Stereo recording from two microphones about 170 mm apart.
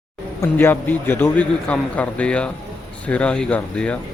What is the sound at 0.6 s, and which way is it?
A man's voice, 10° left (ahead or behind).